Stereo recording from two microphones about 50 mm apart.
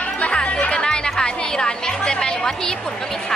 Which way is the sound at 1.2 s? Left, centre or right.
Centre.